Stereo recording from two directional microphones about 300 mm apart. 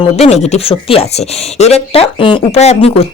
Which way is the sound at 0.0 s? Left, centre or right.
Left.